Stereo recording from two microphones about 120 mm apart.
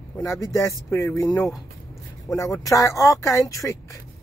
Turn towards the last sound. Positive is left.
turn(degrees=30)  # may be behind; listen again after turning